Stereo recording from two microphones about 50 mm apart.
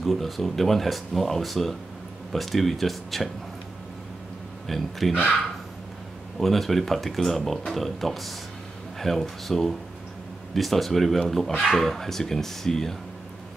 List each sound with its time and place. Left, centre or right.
0.0 s speech: centre
4.6 s speech: centre
6.4 s speech: centre